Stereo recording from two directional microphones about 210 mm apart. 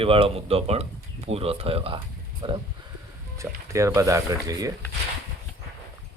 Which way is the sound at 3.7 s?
15° right (ahead or behind).